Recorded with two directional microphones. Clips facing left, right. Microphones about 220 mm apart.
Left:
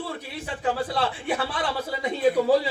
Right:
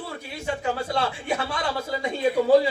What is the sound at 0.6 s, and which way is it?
A man's voice, 30° left (ahead or behind).